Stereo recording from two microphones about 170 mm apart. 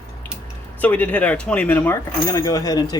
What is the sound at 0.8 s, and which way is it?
Speech, 10° left (ahead or behind).